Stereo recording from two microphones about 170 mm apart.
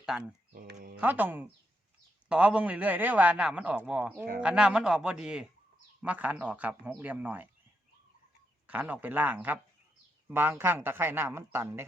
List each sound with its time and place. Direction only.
0.1 s speech: centre (ahead or behind)
0.5 s speech: 55° right (ahead or behind)
0.9 s a man's voice: 10° right (ahead or behind)
8.6 s a man's voice: 10° right (ahead or behind)